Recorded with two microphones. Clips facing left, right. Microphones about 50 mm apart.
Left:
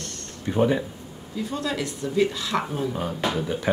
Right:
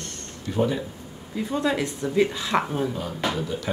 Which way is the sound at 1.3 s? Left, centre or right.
Right.